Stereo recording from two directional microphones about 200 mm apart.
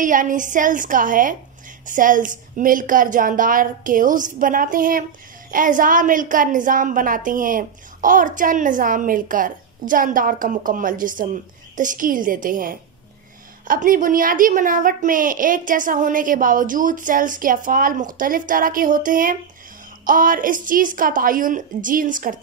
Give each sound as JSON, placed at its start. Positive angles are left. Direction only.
{"t": 0.0, "sound": "a woman's voice", "side_deg": -40}